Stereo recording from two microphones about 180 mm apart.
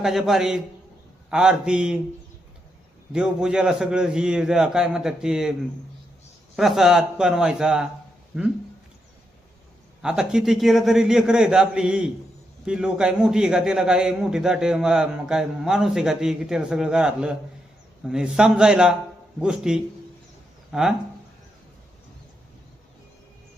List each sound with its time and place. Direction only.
0.0 s a man's voice: centre (ahead or behind)
3.1 s a man's voice: 5° right (ahead or behind)
6.6 s a man's voice: centre (ahead or behind)
10.0 s a man's voice: 5° right (ahead or behind)